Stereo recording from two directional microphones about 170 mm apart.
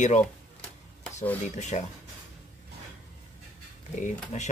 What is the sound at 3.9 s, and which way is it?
Speech, 45° left (ahead or behind).